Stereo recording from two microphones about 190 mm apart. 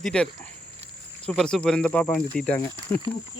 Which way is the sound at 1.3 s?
5° left (ahead or behind).